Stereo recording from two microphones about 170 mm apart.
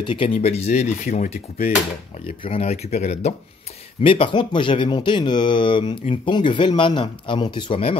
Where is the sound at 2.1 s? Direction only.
30° left (ahead or behind).